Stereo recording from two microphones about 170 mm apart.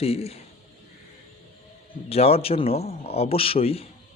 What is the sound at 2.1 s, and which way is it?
Speech, 35° left (ahead or behind).